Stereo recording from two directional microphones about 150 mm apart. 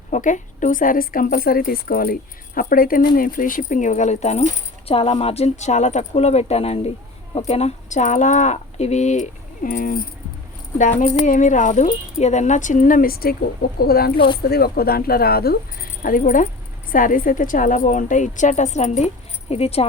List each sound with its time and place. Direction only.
0.1 s a woman's voice: 60° left (ahead or behind)
11.3 s a woman's voice: 55° left (ahead or behind)